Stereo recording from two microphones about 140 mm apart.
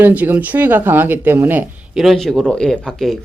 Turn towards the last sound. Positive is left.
turn(degrees=0)  # may be behind; listen again after turning